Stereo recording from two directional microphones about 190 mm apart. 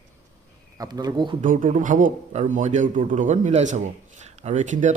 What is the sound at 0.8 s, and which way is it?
Speech, 20° right (ahead or behind).